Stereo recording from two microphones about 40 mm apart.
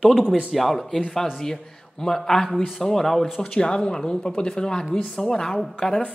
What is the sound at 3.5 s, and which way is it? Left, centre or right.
Speech, left.